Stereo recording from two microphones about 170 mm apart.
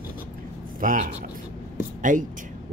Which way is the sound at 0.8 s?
50° right (ahead or behind).